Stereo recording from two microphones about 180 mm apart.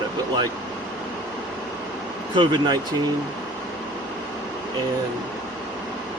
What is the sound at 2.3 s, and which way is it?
Speech, 25° right (ahead or behind).